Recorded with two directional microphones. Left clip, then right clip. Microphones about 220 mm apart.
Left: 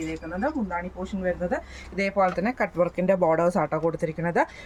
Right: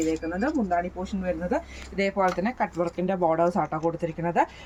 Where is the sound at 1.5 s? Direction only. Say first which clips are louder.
Right 1 dB; 35° left (ahead or behind).